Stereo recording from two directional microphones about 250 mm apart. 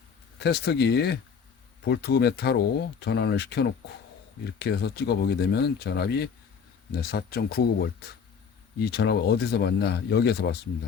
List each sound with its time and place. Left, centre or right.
0.3 s a man's voice: left